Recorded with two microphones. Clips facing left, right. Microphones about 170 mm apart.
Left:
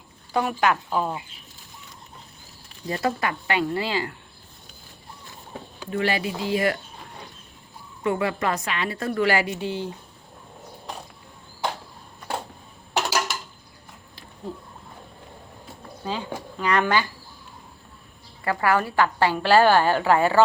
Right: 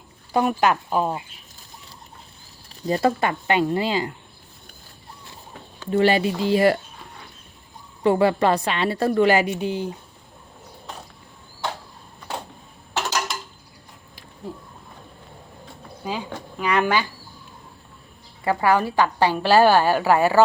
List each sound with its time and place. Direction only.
0.3 s speech: 25° right (ahead or behind)
2.8 s speech: 30° right (ahead or behind)
5.9 s a woman's voice: 30° right (ahead or behind)
8.0 s a woman's voice: 30° right (ahead or behind)
9.2 s speech: 20° right (ahead or behind)
12.9 s a sound: 10° left (ahead or behind)
16.0 s a woman's voice: 10° right (ahead or behind)
18.4 s a woman's voice: 15° right (ahead or behind)